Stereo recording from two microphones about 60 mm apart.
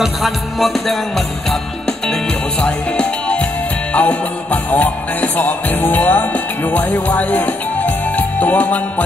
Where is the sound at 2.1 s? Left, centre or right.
Centre.